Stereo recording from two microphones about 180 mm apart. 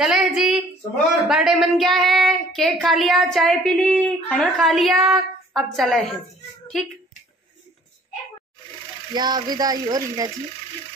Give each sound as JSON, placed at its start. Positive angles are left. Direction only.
{"t": 0.0, "sound": "speech", "side_deg": -5}
{"t": 1.2, "sound": "child singing", "side_deg": -5}
{"t": 9.1, "sound": "speech", "side_deg": -25}